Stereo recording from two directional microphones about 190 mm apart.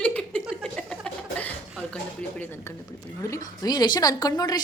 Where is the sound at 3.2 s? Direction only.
20° left (ahead or behind).